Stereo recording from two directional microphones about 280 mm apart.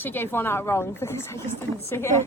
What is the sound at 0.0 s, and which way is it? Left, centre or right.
Speech, centre.